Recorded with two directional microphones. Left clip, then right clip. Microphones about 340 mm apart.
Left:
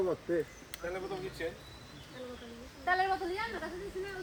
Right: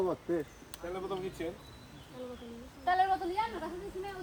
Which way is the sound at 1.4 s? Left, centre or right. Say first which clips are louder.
Left 1 dB; right.